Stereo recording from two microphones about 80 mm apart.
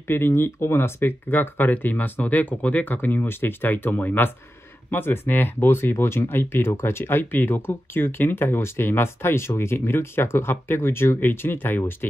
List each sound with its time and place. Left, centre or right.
0.1 s speech: left